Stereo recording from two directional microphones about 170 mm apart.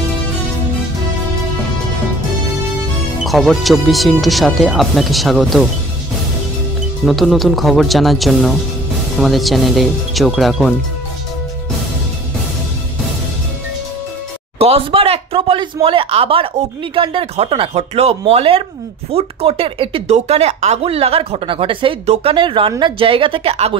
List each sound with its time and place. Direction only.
3.3 s speech: centre (ahead or behind)
7.1 s speech: centre (ahead or behind)
14.6 s speech: 35° right (ahead or behind)